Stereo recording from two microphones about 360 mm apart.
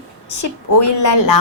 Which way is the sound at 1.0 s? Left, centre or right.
Left.